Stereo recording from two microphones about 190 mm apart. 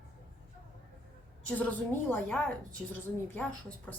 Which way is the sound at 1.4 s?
10° left (ahead or behind).